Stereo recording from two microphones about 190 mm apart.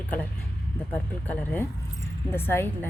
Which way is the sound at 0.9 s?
10° left (ahead or behind).